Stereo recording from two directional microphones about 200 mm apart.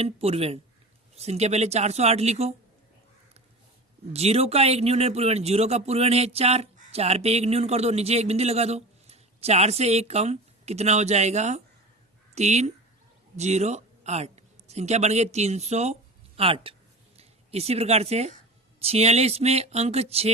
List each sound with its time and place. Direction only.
0.0 s a man's voice: 30° right (ahead or behind)
4.1 s a man's voice: 30° right (ahead or behind)